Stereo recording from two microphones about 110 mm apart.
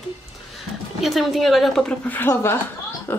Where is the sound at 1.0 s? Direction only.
Centre (ahead or behind).